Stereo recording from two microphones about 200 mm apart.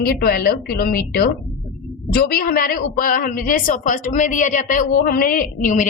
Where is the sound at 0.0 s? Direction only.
50° left (ahead or behind).